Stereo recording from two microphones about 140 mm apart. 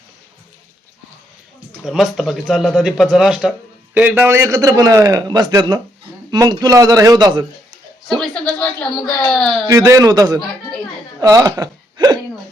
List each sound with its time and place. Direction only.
1.8 s a man's voice: centre (ahead or behind); by 7.4 s 30° right (ahead or behind)
8.2 s speech: 10° left (ahead or behind)
9.6 s a man's voice: 25° right (ahead or behind)
11.2 s hiccup: 25° right (ahead or behind)